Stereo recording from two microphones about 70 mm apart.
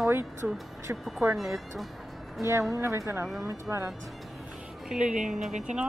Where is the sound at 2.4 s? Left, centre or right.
Centre.